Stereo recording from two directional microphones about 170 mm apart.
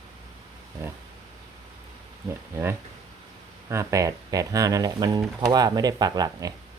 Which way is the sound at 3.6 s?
15° right (ahead or behind).